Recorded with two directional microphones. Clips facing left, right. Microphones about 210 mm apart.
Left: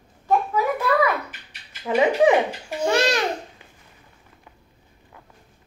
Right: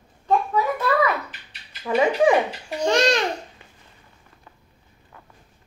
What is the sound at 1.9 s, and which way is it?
Speech, 20° left (ahead or behind).